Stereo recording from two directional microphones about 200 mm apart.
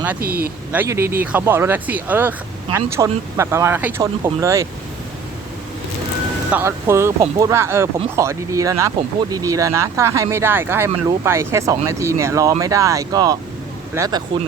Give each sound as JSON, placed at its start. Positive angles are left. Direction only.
{"t": 0.2, "sound": "speech", "side_deg": -50}
{"t": 0.7, "sound": "speech", "side_deg": -10}
{"t": 6.5, "sound": "speech", "side_deg": -10}